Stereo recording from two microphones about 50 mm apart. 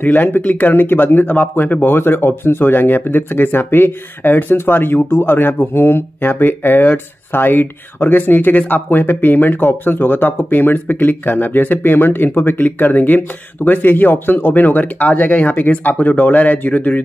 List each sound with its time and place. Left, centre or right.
0.0 s speech: left